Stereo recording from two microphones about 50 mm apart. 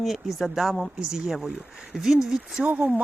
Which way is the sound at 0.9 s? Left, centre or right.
Centre.